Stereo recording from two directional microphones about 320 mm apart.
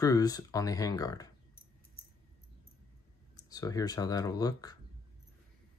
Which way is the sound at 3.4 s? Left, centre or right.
Centre.